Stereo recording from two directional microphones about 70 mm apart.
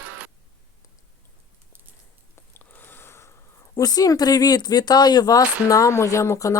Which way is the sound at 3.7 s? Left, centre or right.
Left.